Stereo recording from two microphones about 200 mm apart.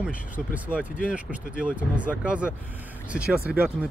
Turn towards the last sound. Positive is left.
turn(degrees=-5)  # may be behind; listen again after turning